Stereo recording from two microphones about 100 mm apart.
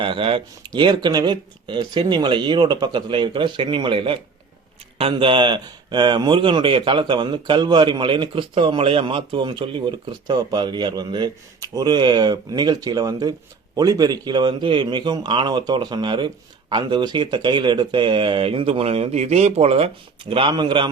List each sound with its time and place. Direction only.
0.0 s a man's voice: 60° right (ahead or behind)
0.8 s a man's voice: 50° right (ahead or behind); by 19.9 s 85° right
20.3 s a man's voice: 55° right (ahead or behind)